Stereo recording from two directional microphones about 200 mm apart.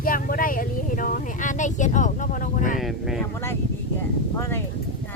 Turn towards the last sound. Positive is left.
turn(degrees=15)  # may be behind; listen again after turning